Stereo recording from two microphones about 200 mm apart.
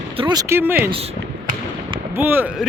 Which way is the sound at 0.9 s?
30° right (ahead or behind).